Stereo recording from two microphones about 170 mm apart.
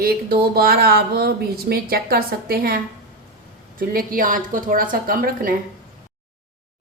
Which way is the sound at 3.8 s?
60° right (ahead or behind).